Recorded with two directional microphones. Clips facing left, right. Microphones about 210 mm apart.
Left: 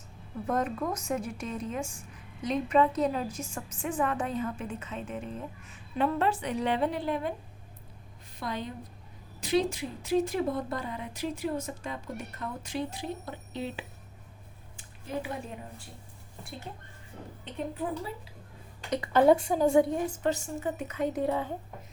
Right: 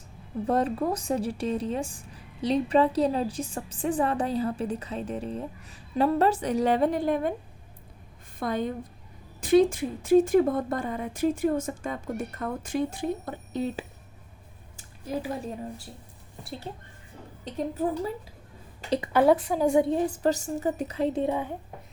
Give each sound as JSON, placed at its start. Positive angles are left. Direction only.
{"t": 0.4, "sound": "speech", "side_deg": -30}
{"t": 8.4, "sound": "a woman's voice", "side_deg": -50}
{"t": 17.4, "sound": "speech", "side_deg": -40}
{"t": 18.9, "sound": "a sound", "side_deg": -20}
{"t": 19.1, "sound": "speech", "side_deg": -5}
{"t": 19.6, "sound": "a woman's voice", "side_deg": -20}
{"t": 20.2, "sound": "speech", "side_deg": -40}